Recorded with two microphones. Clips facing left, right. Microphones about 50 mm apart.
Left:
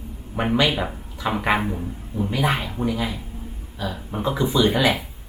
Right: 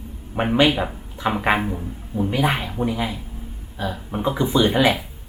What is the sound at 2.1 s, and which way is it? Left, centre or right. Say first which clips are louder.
Speech: right 2 dB; centre.